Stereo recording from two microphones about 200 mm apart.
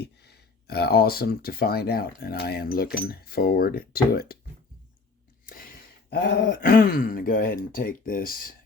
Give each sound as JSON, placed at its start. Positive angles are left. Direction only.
{"t": 0.0, "sound": "speech", "side_deg": 55}
{"t": 6.1, "sound": "speech", "side_deg": 50}